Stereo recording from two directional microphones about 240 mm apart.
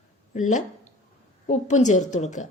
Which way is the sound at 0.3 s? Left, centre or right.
Left.